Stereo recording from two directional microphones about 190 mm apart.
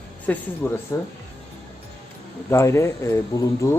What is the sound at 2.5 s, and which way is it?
Speech, 15° left (ahead or behind).